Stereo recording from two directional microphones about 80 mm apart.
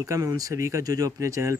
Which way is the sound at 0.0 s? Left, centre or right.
Right.